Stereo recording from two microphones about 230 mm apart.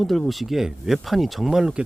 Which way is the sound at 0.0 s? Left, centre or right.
Centre.